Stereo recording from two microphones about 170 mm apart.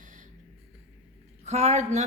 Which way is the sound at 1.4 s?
40° right (ahead or behind).